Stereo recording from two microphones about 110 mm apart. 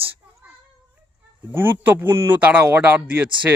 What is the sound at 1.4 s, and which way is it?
Speech, 20° right (ahead or behind).